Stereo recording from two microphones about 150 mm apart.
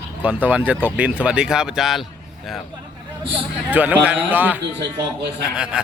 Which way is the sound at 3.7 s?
10° right (ahead or behind).